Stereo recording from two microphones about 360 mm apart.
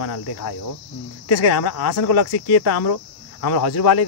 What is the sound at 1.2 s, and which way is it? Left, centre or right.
Speech, left.